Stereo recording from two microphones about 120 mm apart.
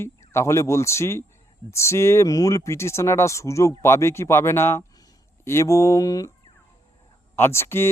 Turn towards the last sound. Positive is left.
turn(degrees=20)  # may be behind; listen again after turning